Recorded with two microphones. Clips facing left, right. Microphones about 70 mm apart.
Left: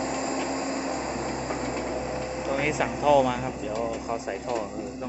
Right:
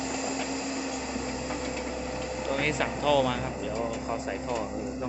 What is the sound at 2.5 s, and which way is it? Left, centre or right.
Speech, centre.